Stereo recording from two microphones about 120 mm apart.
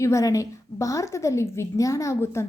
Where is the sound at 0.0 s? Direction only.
25° left (ahead or behind).